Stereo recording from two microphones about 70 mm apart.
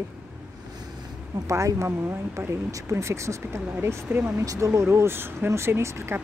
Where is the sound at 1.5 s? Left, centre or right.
Right.